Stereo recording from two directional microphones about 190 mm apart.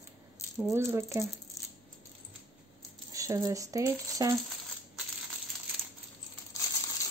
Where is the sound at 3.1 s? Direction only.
15° right (ahead or behind).